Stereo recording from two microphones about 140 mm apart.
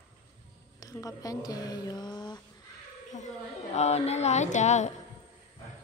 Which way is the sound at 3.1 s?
60° left (ahead or behind).